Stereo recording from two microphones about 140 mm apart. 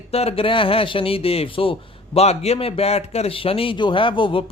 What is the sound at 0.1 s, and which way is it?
A man's voice, 45° left (ahead or behind).